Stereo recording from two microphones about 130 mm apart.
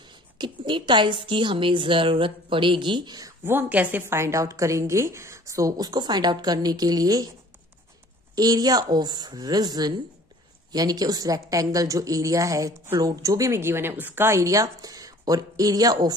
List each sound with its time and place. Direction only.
0.0 s a woman's voice: 35° right (ahead or behind)
3.4 s a woman's voice: 15° right (ahead or behind); by 7.2 s 30° right (ahead or behind)
8.4 s a woman's voice: 30° right (ahead or behind)